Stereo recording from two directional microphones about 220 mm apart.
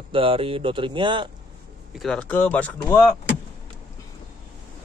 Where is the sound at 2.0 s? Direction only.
5° left (ahead or behind).